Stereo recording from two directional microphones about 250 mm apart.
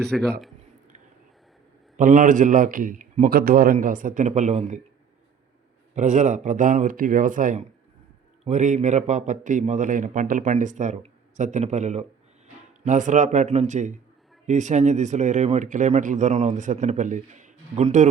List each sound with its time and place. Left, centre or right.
0.1 s a man's voice: centre
2.0 s a man's voice: right
5.9 s a man's voice: right